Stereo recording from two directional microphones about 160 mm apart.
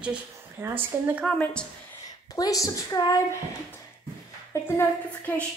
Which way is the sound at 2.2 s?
20° left (ahead or behind).